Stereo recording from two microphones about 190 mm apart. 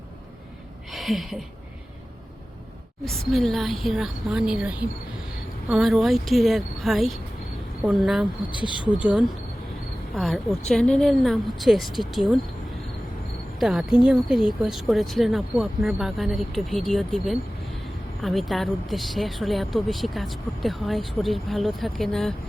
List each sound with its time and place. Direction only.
0.9 s a sound: centre (ahead or behind)
3.0 s speech: centre (ahead or behind)
8.4 s speech: 25° left (ahead or behind)
8.9 s speech: 5° right (ahead or behind)
13.6 s speech: 5° right (ahead or behind)